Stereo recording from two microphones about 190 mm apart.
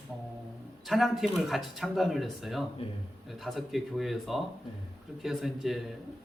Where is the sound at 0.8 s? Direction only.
Centre (ahead or behind).